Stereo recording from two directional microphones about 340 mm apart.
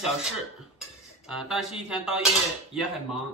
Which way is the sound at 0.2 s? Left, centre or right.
Centre.